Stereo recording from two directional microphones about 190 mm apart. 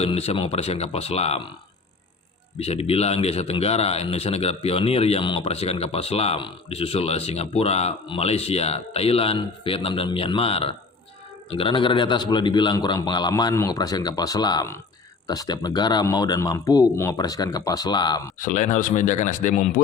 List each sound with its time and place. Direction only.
0.0 s a man's voice: 35° left (ahead or behind)
2.6 s a man's voice: 30° left (ahead or behind)
18.3 s a man's voice: 45° left (ahead or behind)